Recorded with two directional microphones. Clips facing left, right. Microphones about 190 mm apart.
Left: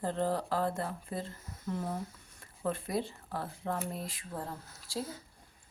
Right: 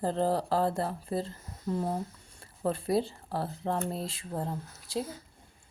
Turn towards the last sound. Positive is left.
turn(degrees=-20)  # may be behind; listen again after turning